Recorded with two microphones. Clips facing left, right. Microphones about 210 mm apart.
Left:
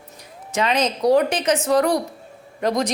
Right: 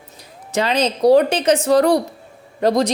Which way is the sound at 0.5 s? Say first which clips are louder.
Right 2 dB; 35° right (ahead or behind).